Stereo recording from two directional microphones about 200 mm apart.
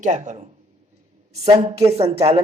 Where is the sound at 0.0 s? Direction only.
35° right (ahead or behind).